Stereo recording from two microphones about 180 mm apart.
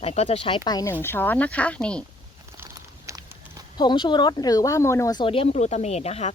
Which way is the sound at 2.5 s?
15° right (ahead or behind).